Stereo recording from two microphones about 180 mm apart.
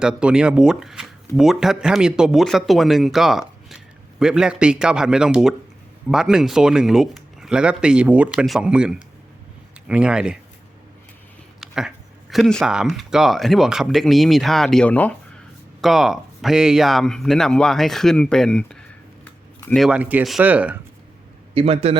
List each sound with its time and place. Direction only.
0.0 s speech: 5° right (ahead or behind)
11.6 s speech: 5° right (ahead or behind)
21.5 s a man's voice: 35° right (ahead or behind)